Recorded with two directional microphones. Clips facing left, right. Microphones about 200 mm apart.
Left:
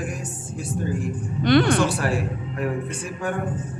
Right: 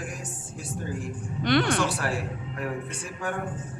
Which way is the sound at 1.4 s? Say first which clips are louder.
Left 6 dB; 35° left (ahead or behind).